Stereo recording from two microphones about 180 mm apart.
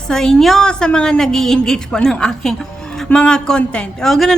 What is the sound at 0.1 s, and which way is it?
A woman's voice, 5° left (ahead or behind).